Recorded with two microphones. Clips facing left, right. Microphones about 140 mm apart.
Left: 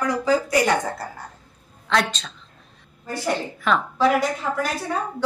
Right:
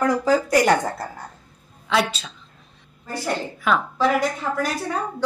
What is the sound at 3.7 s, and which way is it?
Speech, 5° right (ahead or behind).